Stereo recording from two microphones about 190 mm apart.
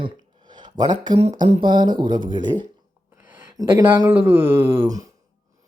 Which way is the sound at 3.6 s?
15° right (ahead or behind).